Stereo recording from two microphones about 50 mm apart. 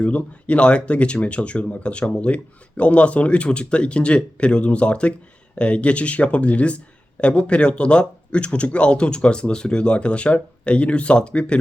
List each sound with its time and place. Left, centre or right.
0.0 s speech: left